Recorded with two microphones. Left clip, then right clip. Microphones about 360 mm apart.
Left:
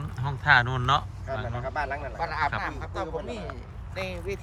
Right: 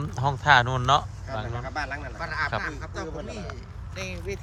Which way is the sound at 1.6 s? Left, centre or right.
Left.